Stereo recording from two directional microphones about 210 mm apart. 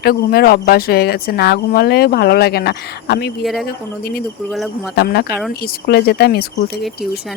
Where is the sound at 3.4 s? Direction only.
Centre (ahead or behind).